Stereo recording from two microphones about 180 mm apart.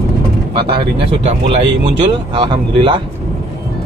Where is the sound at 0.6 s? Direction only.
30° right (ahead or behind).